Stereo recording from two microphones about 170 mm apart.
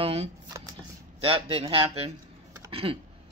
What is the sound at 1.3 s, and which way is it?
Speech, 35° right (ahead or behind).